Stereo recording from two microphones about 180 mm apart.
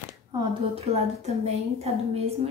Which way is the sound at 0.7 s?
35° right (ahead or behind).